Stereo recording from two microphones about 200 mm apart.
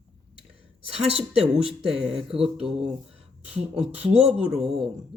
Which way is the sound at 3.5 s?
5° right (ahead or behind).